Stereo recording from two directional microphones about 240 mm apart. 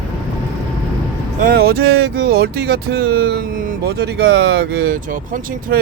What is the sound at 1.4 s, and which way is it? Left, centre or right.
Speech, right.